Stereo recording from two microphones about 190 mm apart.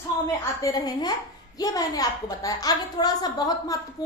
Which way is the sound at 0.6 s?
20° left (ahead or behind).